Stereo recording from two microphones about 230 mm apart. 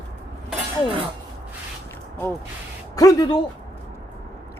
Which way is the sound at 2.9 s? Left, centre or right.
Centre.